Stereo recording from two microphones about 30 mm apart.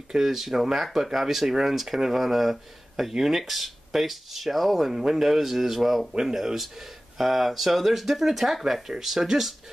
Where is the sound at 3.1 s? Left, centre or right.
Centre.